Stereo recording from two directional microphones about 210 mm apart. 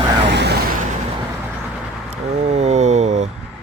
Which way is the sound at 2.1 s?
30° right (ahead or behind).